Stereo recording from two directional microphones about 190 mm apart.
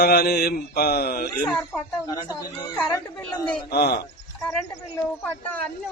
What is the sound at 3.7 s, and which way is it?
Speech, 55° left (ahead or behind).